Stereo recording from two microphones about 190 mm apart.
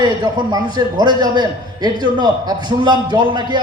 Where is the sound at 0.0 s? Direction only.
20° right (ahead or behind).